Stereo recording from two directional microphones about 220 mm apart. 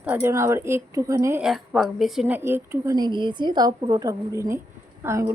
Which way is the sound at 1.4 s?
Centre (ahead or behind).